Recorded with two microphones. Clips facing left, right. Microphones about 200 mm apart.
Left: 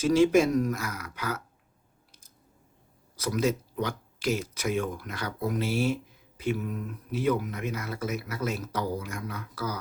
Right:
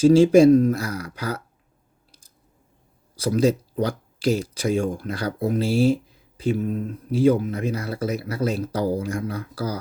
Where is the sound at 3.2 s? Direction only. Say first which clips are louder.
Right 7 dB; 30° right (ahead or behind).